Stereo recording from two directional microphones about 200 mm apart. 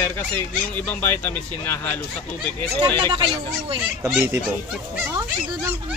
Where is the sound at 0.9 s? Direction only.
10° left (ahead or behind).